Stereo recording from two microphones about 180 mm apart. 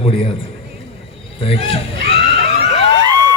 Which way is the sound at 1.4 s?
30° left (ahead or behind).